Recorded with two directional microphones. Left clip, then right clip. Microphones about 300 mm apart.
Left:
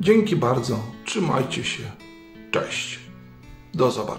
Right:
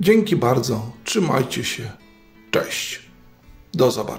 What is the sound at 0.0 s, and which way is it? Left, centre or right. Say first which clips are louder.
Speech: right 2 dB; centre.